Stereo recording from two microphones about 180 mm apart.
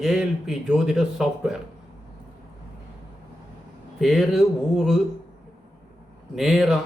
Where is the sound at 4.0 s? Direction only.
Centre (ahead or behind).